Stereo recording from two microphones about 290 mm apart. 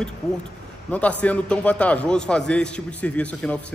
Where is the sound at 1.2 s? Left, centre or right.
Centre.